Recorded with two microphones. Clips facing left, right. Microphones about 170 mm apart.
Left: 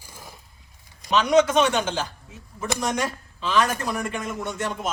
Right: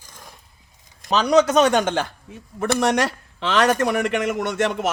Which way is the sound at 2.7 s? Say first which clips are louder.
Right 6 dB; 70° right (ahead or behind).